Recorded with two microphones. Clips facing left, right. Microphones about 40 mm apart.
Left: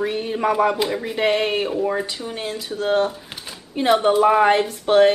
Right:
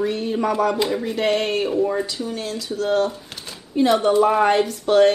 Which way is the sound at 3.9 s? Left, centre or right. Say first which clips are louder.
Left 3 dB; centre.